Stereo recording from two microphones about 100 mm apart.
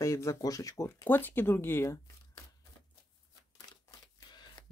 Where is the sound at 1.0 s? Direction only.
20° left (ahead or behind).